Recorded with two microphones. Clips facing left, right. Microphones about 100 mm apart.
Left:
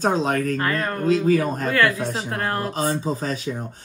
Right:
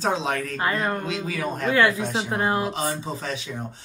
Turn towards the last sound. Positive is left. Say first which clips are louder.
# left 4 dB
turn(degrees=40)  # may be behind; listen again after turning